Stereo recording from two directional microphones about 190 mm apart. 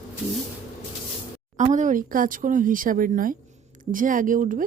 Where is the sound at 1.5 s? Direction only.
40° right (ahead or behind).